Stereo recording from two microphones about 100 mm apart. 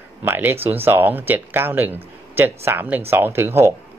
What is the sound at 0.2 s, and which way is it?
Speech, 20° right (ahead or behind).